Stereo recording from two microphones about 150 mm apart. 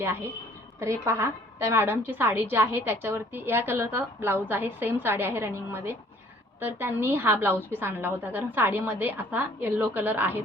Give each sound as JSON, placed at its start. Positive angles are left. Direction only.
{"t": 0.0, "sound": "a woman's voice", "side_deg": -15}